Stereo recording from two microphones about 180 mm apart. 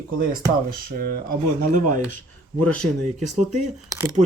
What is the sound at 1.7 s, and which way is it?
Speech, 45° right (ahead or behind).